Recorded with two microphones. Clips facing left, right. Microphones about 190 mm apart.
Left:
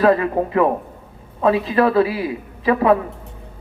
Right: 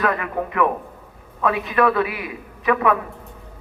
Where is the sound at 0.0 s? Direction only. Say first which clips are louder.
Left 7 dB; 30° left (ahead or behind).